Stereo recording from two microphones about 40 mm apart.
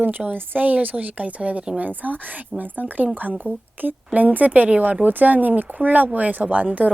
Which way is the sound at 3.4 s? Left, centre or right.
Right.